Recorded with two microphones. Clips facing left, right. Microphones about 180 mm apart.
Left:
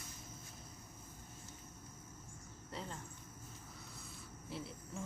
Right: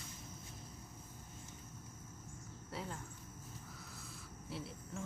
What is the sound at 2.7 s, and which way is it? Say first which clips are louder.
Cricket: right 1 dB; 5° right (ahead or behind).